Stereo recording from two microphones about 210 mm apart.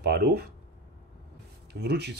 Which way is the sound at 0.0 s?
50° right (ahead or behind).